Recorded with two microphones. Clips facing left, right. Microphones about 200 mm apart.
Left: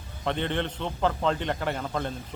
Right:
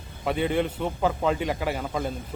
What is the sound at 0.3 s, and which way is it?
A man's voice, 5° right (ahead or behind).